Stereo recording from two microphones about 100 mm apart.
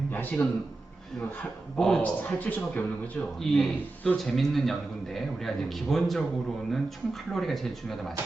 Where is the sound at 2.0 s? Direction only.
15° left (ahead or behind).